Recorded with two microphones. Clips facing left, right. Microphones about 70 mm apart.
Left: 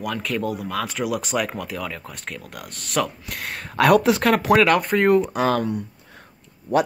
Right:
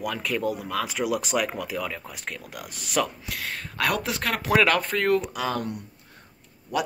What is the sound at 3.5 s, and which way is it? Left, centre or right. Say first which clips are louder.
Speech: left 10 dB; left.